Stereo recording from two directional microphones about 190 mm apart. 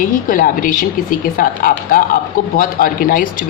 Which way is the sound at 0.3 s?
45° left (ahead or behind).